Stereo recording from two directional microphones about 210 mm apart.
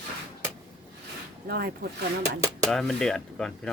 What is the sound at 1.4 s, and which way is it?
Speech, 45° right (ahead or behind).